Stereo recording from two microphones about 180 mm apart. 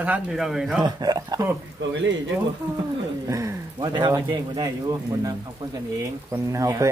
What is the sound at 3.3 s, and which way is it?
Speech, 15° right (ahead or behind).